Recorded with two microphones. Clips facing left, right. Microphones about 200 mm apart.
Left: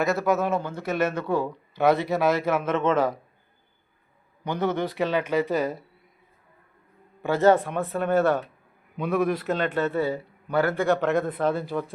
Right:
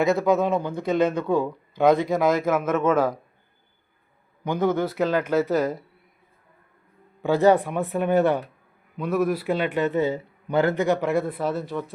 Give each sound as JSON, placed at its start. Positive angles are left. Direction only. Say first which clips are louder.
{"t": 0.0, "sound": "a man's voice", "louder": "right 3 dB", "side_deg": -15}
{"t": 4.4, "sound": "a man's voice", "louder": "right 3 dB", "side_deg": -10}
{"t": 5.3, "sound": "speech", "louder": "right 2 dB", "side_deg": 10}
{"t": 7.2, "sound": "a man's voice", "louder": "right 1 dB", "side_deg": -15}
{"t": 9.0, "sound": "a man's voice", "louder": "right 1 dB", "side_deg": 0}